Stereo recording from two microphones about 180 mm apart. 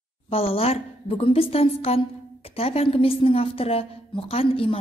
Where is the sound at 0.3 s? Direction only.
35° left (ahead or behind).